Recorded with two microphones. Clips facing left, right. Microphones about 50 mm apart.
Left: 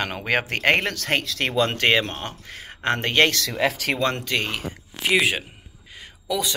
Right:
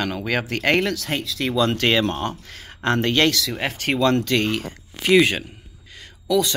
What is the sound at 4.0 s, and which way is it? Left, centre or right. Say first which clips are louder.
Speech: right 9 dB; left.